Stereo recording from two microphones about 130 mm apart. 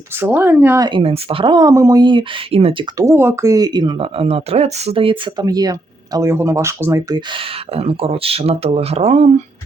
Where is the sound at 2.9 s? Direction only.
20° right (ahead or behind).